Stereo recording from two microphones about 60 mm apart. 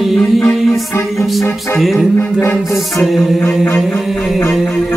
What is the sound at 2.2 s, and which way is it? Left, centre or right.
Music, left.